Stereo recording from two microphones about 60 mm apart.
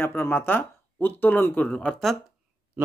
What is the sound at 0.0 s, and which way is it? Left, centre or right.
Speech, left.